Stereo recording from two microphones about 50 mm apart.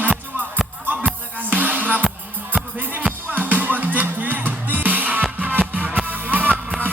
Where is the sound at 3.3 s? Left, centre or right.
Right.